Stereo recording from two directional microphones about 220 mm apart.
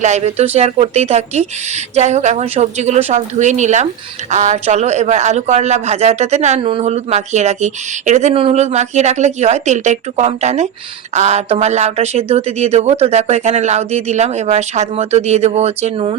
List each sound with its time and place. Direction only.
0.0 s a woman's voice: 30° right (ahead or behind)